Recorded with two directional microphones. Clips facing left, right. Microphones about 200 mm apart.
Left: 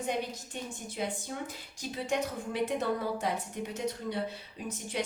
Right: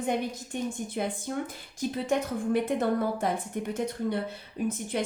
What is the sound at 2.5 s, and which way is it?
A woman's voice, 55° right (ahead or behind).